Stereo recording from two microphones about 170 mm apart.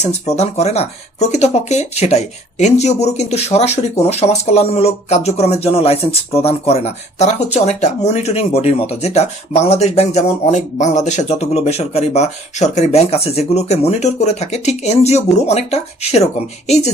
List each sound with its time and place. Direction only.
0.0 s speech: 40° left (ahead or behind)